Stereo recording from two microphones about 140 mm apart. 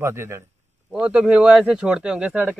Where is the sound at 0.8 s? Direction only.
5° right (ahead or behind).